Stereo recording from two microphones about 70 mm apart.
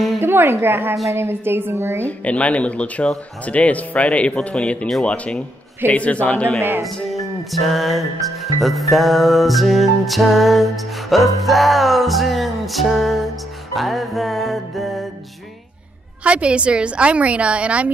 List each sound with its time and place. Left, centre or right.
0.2 s a woman's voice: right
2.0 s speech: centre
7.5 s music: centre
16.3 s a woman's voice: centre